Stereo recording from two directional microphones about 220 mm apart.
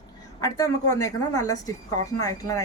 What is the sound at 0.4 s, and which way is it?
Speech, 15° left (ahead or behind).